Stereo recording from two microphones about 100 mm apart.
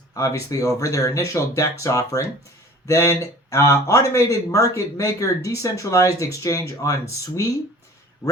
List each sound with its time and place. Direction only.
0.2 s speech: 35° left (ahead or behind)